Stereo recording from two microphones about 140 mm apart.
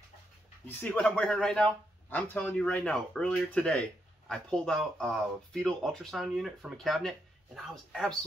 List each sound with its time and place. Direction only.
0.7 s a man's voice: 15° left (ahead or behind)